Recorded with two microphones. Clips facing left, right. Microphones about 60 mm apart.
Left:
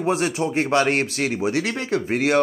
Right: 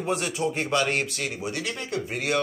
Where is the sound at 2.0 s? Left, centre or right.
Left.